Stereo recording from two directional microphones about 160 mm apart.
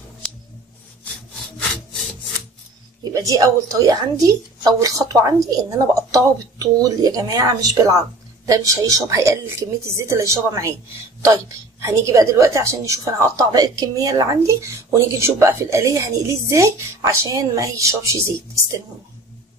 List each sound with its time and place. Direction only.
3.0 s a woman's voice: 20° right (ahead or behind)